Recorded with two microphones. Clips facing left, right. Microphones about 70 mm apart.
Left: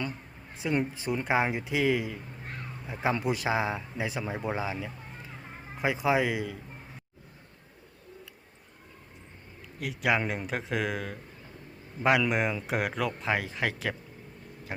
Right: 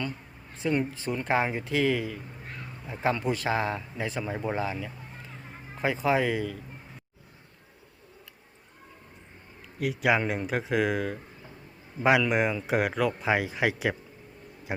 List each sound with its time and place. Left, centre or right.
0.5 s speech: centre
9.7 s speech: centre
12.2 s a man's voice: centre